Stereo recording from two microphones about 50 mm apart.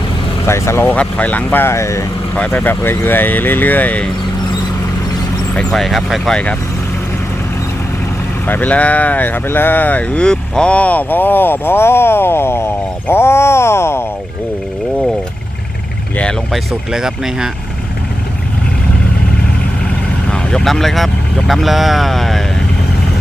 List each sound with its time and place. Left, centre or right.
0.4 s speech: left
0.9 s speech: left
1.6 s speech: left
2.3 s speech: left
2.6 s speech: left
5.7 s speech: centre
6.3 s speech: centre
8.4 s speech: left
10.2 s speech: centre; by 14.0 s left
16.9 s speech: centre
20.7 s speech: centre